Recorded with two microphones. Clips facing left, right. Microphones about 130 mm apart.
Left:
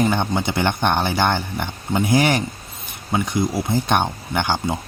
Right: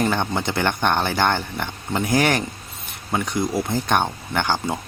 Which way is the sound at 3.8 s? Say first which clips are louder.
Left 1 dB; 15° left (ahead or behind).